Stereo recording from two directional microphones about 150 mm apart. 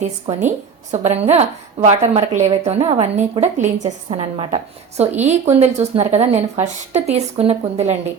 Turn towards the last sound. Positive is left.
turn(degrees=-45)  # may be behind; listen again after turning